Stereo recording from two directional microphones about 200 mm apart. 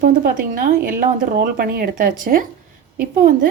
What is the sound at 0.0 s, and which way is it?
A woman's voice, 45° right (ahead or behind).